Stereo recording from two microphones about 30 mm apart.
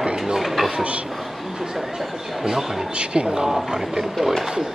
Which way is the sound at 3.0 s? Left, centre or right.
Right.